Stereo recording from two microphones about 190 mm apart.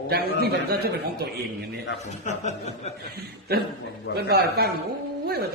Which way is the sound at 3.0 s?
55° right (ahead or behind).